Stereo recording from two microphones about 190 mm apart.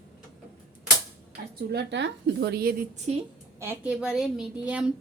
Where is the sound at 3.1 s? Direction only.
35° right (ahead or behind).